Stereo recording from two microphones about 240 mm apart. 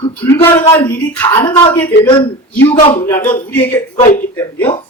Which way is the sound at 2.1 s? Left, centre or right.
Centre.